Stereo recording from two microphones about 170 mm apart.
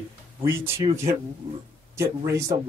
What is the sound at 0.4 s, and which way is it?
A man's voice, 20° right (ahead or behind).